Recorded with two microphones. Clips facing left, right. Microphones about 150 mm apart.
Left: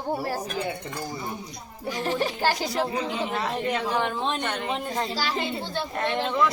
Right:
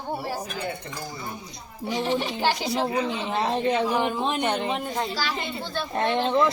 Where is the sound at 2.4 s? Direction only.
45° left (ahead or behind).